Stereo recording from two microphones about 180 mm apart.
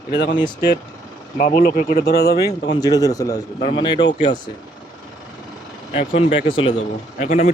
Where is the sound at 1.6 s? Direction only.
50° left (ahead or behind).